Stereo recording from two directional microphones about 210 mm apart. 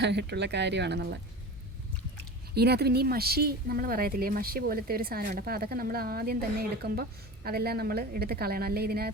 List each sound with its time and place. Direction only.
0.0 s speech: 55° right (ahead or behind)
2.6 s speech: 50° right (ahead or behind)